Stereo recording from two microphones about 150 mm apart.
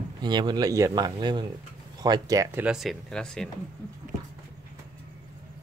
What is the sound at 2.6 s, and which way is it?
Speech, 5° right (ahead or behind).